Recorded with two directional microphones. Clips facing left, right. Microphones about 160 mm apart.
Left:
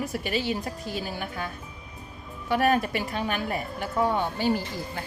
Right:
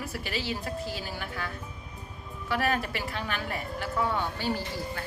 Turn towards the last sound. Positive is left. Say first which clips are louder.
# left 4 dB
turn(degrees=15)  # may be behind; listen again after turning